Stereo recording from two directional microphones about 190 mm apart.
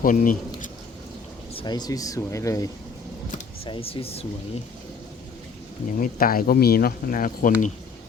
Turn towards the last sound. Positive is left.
turn(degrees=45)  # may be behind; listen again after turning